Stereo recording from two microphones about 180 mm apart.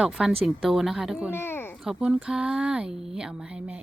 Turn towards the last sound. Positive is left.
turn(degrees=-5)  # may be behind; listen again after turning